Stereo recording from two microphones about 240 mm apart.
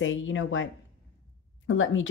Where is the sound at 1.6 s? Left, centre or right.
Left.